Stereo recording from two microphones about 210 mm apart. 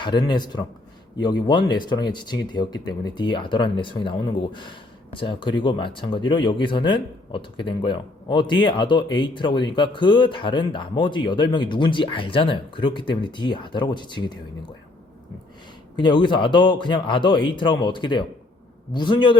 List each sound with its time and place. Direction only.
0.0 s speech: 20° left (ahead or behind)
16.0 s speech: 20° left (ahead or behind)